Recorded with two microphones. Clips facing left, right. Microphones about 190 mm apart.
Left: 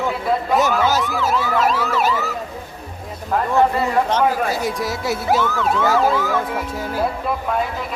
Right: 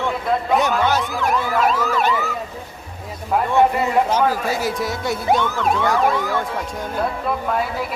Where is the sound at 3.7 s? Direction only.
10° right (ahead or behind).